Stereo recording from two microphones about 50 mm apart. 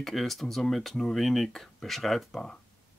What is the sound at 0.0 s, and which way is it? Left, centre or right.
Speech, centre.